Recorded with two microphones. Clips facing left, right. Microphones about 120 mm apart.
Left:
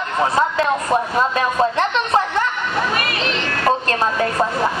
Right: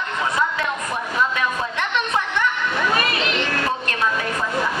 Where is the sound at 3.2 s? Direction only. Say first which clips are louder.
Left 1 dB; 35° left (ahead or behind).